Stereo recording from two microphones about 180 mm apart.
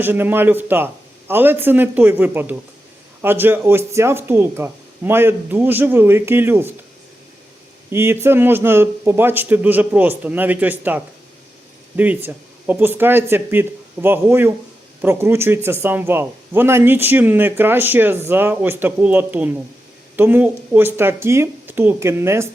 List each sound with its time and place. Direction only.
0.0 s speech: 10° right (ahead or behind)
7.9 s speech: 15° right (ahead or behind)